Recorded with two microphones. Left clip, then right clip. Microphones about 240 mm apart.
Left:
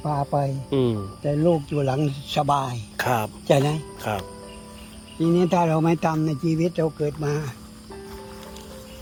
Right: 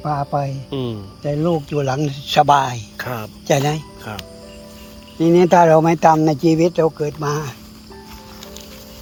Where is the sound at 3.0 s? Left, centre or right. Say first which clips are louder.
Left 7 dB; left.